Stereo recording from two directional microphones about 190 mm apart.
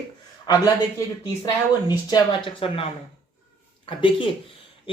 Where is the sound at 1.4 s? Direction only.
20° left (ahead or behind).